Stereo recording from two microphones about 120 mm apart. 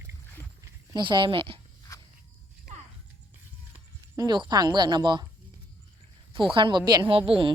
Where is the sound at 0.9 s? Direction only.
40° right (ahead or behind).